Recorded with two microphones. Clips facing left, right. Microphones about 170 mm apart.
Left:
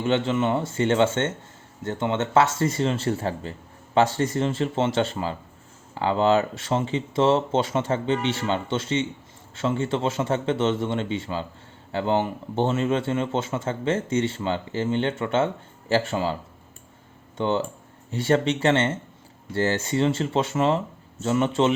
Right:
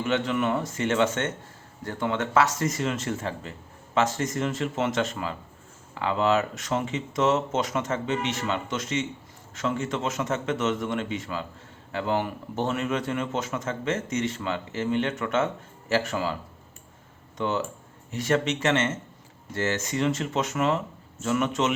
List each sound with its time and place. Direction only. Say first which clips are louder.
0.0 s speech: left 3 dB; 25° left (ahead or behind)